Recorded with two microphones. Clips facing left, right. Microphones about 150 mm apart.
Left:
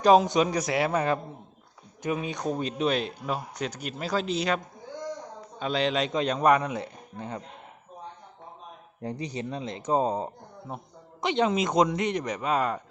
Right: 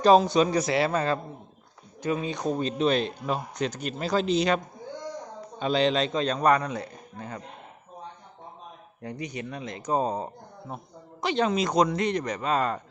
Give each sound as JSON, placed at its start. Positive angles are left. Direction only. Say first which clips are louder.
{"t": 0.0, "sound": "a man's voice", "louder": "right 1 dB", "side_deg": 15}
{"t": 6.1, "sound": "speech", "louder": "left 4 dB", "side_deg": 15}
{"t": 9.0, "sound": "speech", "louder": "left 2 dB", "side_deg": 30}